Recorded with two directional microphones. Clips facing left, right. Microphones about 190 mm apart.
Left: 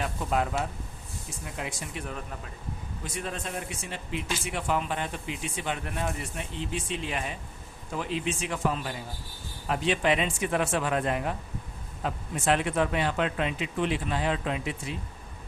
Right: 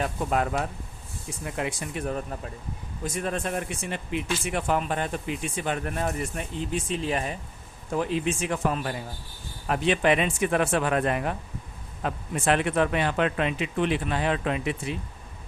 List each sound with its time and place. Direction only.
0.0 s speech: 45° right (ahead or behind)
1.5 s speech: 60° right (ahead or behind)
3.0 s speech: 50° right (ahead or behind)